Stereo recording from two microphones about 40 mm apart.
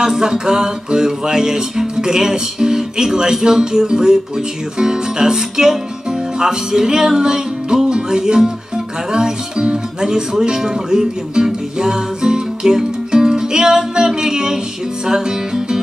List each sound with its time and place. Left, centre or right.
0.0 s music: centre